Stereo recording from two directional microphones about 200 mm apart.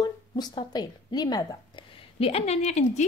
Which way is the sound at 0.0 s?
20° left (ahead or behind).